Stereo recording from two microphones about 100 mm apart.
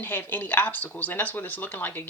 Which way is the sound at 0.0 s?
20° left (ahead or behind).